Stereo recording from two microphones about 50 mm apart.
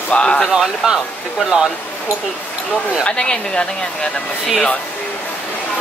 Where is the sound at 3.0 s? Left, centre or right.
Centre.